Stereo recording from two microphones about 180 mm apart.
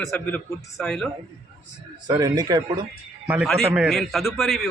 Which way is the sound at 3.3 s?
5° right (ahead or behind).